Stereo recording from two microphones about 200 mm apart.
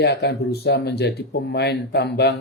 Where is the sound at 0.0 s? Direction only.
60° left (ahead or behind).